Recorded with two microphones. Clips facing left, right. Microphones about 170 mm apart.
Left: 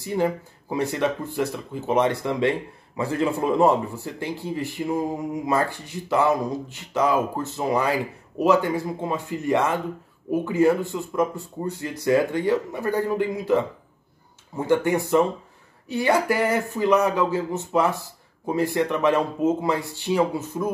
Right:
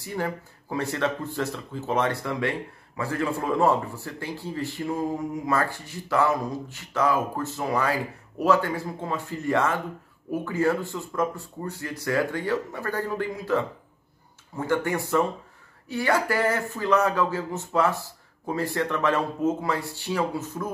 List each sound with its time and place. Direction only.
0.0 s a man's voice: 20° left (ahead or behind)